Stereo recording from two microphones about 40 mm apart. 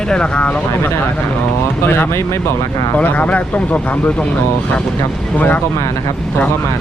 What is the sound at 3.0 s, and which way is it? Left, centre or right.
Speech, left.